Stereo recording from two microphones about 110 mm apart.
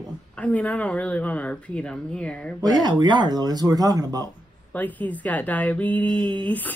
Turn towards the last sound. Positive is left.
turn(degrees=15)  # may be behind; listen again after turning